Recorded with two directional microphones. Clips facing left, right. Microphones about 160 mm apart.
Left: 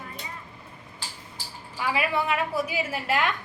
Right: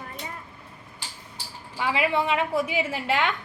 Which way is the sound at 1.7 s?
20° right (ahead or behind).